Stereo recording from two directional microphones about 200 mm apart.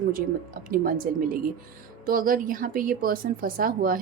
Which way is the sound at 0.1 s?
45° right (ahead or behind).